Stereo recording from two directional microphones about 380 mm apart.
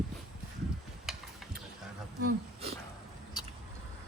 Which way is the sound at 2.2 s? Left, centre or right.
Centre.